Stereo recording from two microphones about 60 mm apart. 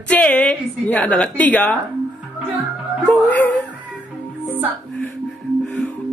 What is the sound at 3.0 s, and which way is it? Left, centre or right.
Music, left.